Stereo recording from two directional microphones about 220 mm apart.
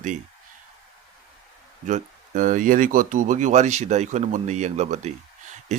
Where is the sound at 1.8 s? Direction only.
35° right (ahead or behind).